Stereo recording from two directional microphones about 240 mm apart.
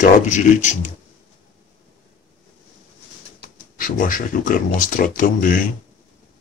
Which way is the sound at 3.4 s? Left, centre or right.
Left.